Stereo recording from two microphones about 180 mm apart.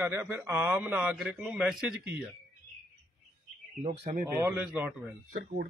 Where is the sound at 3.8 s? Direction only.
35° right (ahead or behind).